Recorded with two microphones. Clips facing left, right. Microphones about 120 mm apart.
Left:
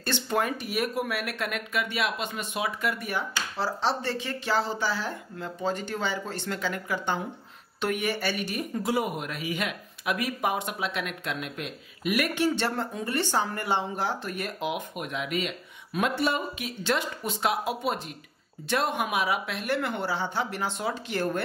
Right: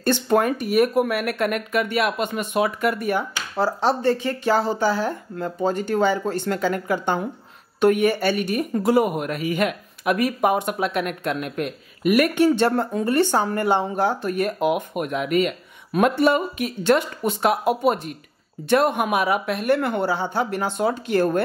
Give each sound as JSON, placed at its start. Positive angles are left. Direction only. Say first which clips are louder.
{"t": 0.0, "sound": "speech", "louder": "right 8 dB", "side_deg": -50}